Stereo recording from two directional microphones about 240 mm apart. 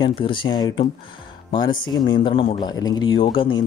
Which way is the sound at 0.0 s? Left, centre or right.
Left.